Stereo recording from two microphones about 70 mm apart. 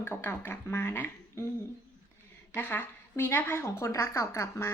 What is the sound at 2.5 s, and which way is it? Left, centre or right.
A woman's voice, left.